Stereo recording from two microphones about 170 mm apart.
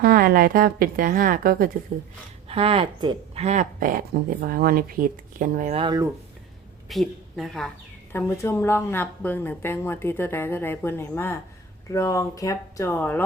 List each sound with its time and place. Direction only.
0.0 s speech: 60° right (ahead or behind)
2.5 s speech: 35° right (ahead or behind)
3.4 s speech: 45° right (ahead or behind)
5.7 s speech: 30° right (ahead or behind)
6.8 s a woman's voice: centre (ahead or behind)
8.1 s speech: 15° left (ahead or behind)